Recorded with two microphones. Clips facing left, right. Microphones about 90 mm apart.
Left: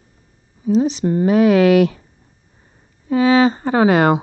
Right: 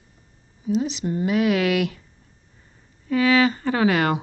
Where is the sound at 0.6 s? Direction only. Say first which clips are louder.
Left 7 dB; 40° left (ahead or behind).